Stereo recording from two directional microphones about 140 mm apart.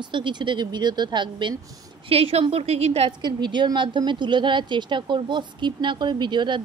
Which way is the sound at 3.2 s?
30° right (ahead or behind).